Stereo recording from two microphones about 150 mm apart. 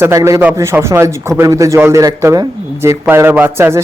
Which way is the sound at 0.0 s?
20° right (ahead or behind).